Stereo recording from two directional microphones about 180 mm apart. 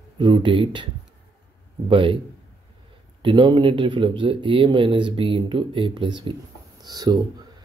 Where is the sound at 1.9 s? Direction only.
30° right (ahead or behind).